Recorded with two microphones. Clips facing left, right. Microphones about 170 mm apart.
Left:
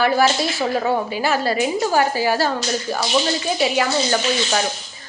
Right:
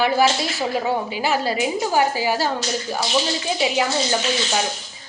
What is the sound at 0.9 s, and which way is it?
A woman's voice, 15° right (ahead or behind).